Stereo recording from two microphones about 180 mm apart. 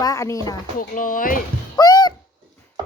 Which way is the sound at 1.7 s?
20° left (ahead or behind).